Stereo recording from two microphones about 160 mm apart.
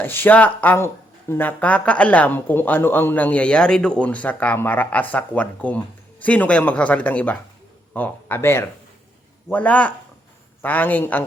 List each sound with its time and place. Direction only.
0.0 s speech: 15° left (ahead or behind)